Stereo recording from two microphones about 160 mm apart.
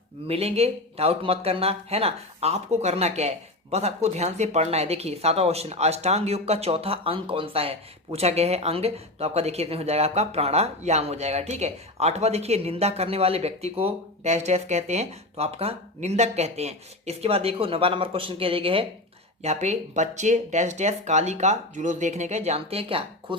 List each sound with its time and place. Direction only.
0.3 s speech: 40° right (ahead or behind)